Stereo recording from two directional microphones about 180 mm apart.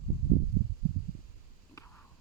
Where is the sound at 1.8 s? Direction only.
20° left (ahead or behind).